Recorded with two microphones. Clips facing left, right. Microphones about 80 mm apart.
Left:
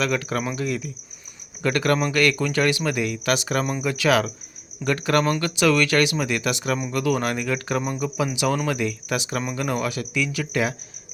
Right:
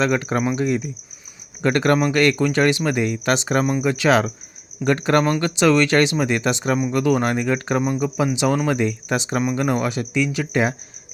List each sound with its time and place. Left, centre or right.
0.0 s speech: right
3.6 s speech: centre
3.8 s speech: right